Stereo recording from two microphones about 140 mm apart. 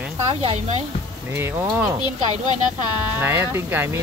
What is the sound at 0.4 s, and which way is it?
Speech, 50° right (ahead or behind).